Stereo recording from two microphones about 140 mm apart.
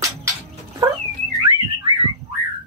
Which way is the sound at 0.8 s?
30° right (ahead or behind).